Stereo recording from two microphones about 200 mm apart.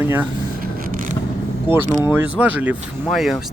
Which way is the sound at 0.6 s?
45° right (ahead or behind).